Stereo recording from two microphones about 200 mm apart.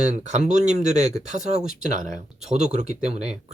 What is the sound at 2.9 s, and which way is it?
Speech, 5° right (ahead or behind).